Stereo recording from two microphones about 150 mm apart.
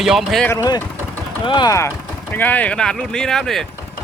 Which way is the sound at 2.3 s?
10° left (ahead or behind).